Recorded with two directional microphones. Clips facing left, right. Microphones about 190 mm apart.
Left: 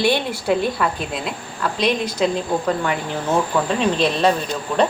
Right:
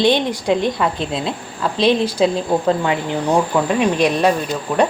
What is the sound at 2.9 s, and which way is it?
A woman's voice, 20° right (ahead or behind).